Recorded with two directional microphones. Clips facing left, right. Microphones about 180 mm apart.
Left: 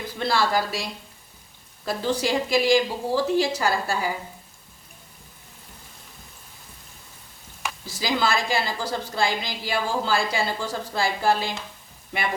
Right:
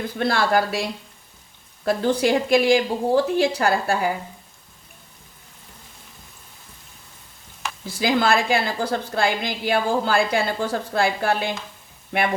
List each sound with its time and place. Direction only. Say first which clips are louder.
0.0 s a woman's voice: right 2 dB; 55° right (ahead or behind)
7.9 s a woman's voice: right 5 dB; 55° right (ahead or behind)